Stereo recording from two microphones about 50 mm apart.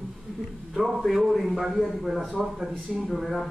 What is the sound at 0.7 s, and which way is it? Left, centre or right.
A man's voice, centre.